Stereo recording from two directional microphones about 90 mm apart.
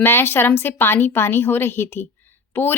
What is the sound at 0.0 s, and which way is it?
A woman's voice, 25° left (ahead or behind).